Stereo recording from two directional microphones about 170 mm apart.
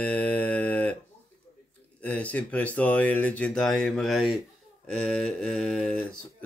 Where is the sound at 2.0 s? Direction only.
10° left (ahead or behind).